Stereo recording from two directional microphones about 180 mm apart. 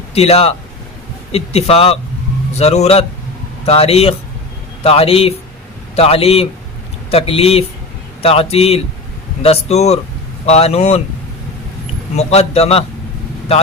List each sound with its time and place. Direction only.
0.1 s speech: 35° left (ahead or behind)
12.1 s speech: 35° left (ahead or behind)